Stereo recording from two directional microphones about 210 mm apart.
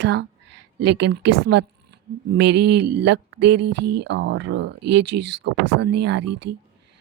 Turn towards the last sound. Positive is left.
turn(degrees=-55)  # may be behind; listen again after turning